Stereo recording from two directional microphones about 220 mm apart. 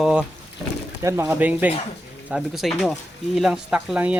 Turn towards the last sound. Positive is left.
turn(degrees=-5)  # may be behind; listen again after turning